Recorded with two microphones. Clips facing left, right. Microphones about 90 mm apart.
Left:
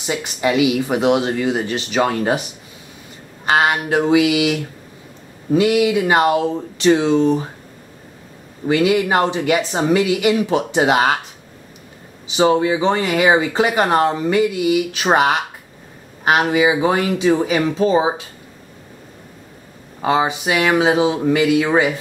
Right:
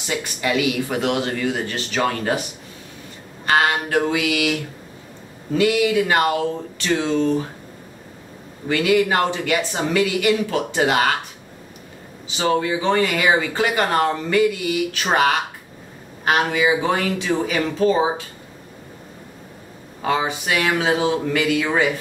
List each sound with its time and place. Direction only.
0.0 s speech: 20° left (ahead or behind)
3.4 s speech: 20° left (ahead or behind)
8.6 s speech: 20° left (ahead or behind)
12.3 s speech: 20° left (ahead or behind)
20.0 s speech: 20° left (ahead or behind)